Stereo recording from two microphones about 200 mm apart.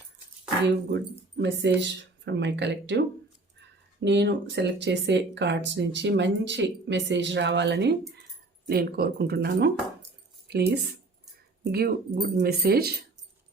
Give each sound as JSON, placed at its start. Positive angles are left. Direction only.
{"t": 1.4, "sound": "speech", "side_deg": -60}
{"t": 4.0, "sound": "speech", "side_deg": -60}